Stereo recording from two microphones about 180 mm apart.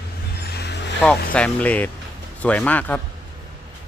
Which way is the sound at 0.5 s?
65° left (ahead or behind).